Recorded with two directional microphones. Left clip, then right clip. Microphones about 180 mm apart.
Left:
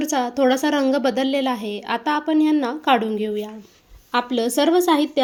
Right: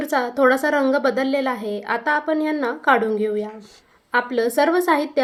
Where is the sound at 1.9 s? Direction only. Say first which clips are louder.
Even; 35° left (ahead or behind).